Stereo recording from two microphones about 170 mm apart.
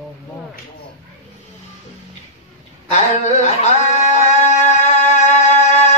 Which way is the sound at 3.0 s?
45° left (ahead or behind).